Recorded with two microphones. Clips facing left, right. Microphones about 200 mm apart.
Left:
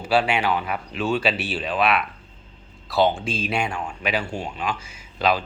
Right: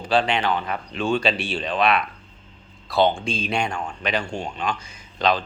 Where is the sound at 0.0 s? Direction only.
10° left (ahead or behind).